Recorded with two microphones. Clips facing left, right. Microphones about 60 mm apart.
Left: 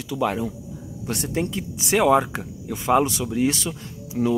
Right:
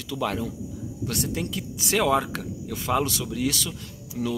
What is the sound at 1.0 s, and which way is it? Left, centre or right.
Speech, left.